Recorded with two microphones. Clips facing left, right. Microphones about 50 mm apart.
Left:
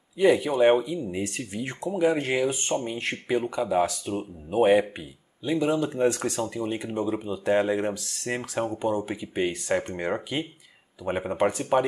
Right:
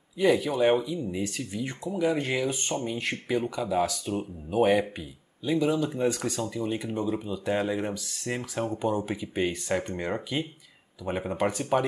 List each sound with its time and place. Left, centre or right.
0.2 s speech: centre
1.3 s speech: left
4.0 s speech: centre
6.0 s speech: centre
6.3 s speech: centre
8.6 s speech: centre